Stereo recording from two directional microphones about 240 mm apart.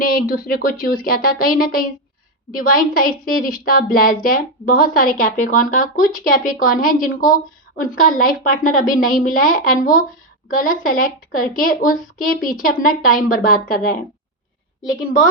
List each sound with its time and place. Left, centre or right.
0.0 s a woman's voice: left